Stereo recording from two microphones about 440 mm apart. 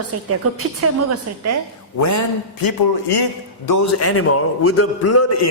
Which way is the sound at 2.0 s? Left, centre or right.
Left.